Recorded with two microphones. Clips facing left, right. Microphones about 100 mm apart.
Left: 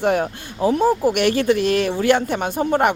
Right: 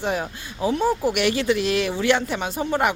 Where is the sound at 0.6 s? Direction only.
40° left (ahead or behind).